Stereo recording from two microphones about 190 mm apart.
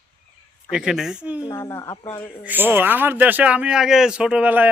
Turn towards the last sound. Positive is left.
turn(degrees=-10)  # may be behind; listen again after turning